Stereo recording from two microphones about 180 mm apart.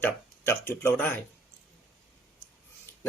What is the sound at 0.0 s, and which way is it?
Speech, 10° left (ahead or behind).